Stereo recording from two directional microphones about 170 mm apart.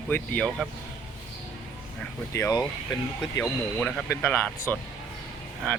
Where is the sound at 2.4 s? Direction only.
15° left (ahead or behind).